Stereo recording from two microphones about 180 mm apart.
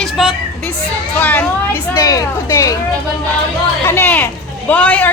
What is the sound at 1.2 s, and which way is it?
Speech, 10° left (ahead or behind).